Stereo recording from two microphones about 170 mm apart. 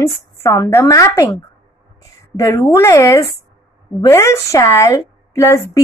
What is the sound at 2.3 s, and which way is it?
A woman's voice, 15° left (ahead or behind).